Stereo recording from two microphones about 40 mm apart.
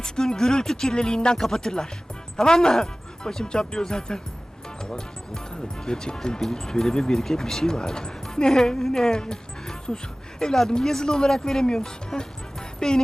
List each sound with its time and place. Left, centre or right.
0.0 s a woman's voice: centre